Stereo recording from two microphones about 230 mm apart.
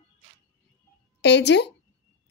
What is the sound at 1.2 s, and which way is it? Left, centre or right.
Speech, left.